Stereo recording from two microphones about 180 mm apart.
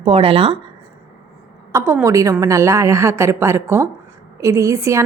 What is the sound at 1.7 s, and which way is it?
A woman's voice, 10° right (ahead or behind).